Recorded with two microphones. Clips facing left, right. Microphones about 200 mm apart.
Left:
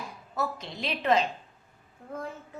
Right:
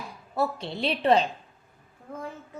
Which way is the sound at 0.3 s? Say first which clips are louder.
Right 5 dB; 30° right (ahead or behind).